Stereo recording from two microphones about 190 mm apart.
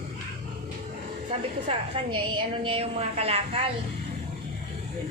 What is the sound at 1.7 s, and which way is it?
A woman's voice, 30° right (ahead or behind).